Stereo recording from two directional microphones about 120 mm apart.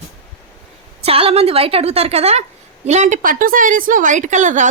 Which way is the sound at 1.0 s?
55° right (ahead or behind).